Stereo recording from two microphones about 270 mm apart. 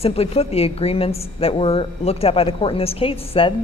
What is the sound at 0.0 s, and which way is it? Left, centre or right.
Speech, left.